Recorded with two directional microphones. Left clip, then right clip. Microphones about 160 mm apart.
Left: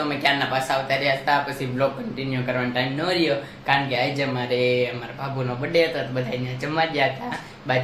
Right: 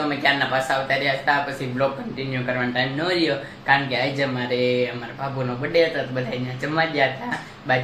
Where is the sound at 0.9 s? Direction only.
5° left (ahead or behind).